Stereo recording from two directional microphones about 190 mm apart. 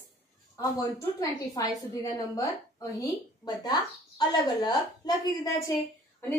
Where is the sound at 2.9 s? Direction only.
20° left (ahead or behind).